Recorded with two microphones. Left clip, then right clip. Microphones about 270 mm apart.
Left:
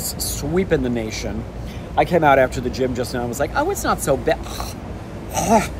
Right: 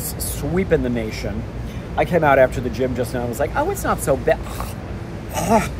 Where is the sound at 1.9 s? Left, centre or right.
Centre.